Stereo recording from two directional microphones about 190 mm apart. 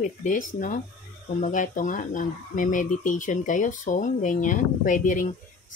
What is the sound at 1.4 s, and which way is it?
Speech, 45° left (ahead or behind).